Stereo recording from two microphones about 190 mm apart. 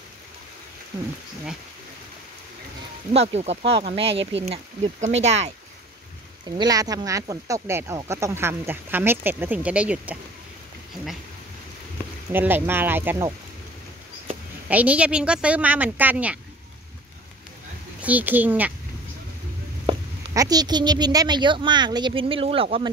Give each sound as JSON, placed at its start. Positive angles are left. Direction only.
{"t": 3.1, "sound": "speech", "side_deg": -35}
{"t": 6.4, "sound": "speech", "side_deg": -20}
{"t": 12.3, "sound": "speech", "side_deg": -10}
{"t": 14.7, "sound": "speech", "side_deg": -10}
{"t": 18.0, "sound": "speech", "side_deg": -10}
{"t": 19.9, "sound": "speech", "side_deg": -20}